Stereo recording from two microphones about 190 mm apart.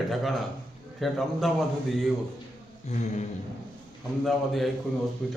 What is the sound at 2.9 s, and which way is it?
Speech, 40° left (ahead or behind).